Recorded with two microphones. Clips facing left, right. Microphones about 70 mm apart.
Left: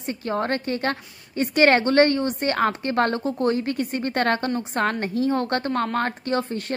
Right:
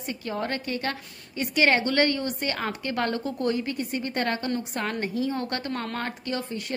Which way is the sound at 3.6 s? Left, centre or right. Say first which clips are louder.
Left 4 dB; left.